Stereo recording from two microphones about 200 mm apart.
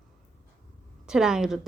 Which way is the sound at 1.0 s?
5° right (ahead or behind).